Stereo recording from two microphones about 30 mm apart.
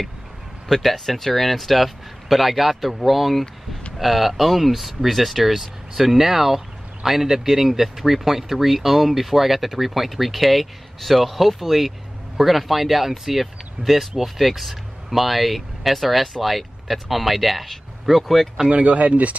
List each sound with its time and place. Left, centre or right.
0.8 s speech: centre
18.7 s speech: right